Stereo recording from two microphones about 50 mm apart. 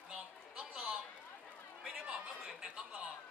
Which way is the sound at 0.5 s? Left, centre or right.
Centre.